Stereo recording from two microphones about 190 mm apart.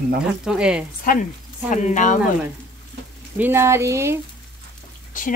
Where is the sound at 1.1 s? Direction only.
45° left (ahead or behind).